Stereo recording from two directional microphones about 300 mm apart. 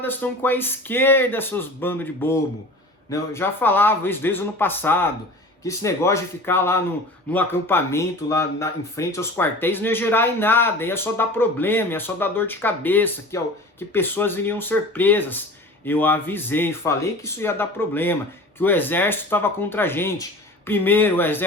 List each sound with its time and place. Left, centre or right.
0.0 s speech: centre